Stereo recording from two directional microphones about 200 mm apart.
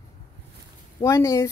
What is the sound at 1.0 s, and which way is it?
Speech, 15° left (ahead or behind).